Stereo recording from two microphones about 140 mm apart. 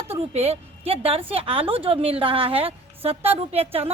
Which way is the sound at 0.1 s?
45° right (ahead or behind).